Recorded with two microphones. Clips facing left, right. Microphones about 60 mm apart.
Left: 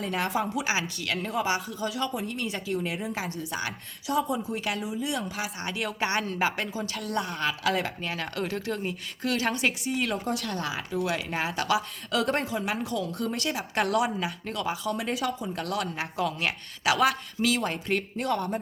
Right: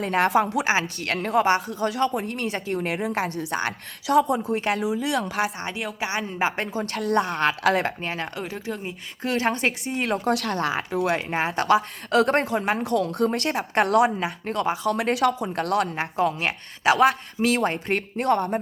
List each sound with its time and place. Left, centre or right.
0.0 s speech: right
0.6 s speech: right
1.1 s speech: right
4.0 s speech: right
4.7 s speech: right
5.8 s speech: centre
6.6 s speech: right
8.0 s speech: right
8.4 s speech: centre
9.2 s speech: right
10.2 s speech: right
14.8 s speech: right
16.0 s speech: right